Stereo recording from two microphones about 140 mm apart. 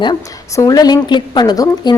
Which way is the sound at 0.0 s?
25° left (ahead or behind).